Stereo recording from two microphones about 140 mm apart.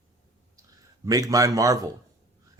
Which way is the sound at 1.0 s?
25° right (ahead or behind).